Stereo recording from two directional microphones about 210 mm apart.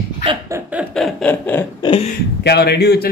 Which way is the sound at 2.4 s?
50° left (ahead or behind).